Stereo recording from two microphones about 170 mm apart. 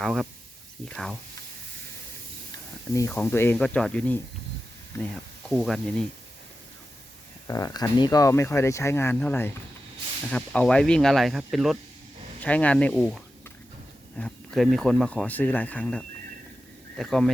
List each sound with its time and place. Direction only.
0.0 s speech: centre (ahead or behind)
2.9 s speech: 15° left (ahead or behind)
5.5 s speech: centre (ahead or behind)
7.4 s speech: 20° left (ahead or behind); by 17.3 s centre (ahead or behind)